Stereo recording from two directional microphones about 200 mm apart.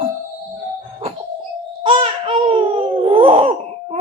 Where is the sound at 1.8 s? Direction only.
25° right (ahead or behind).